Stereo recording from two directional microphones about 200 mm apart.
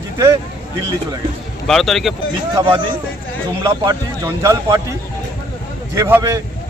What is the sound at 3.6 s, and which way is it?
Speech, 15° right (ahead or behind).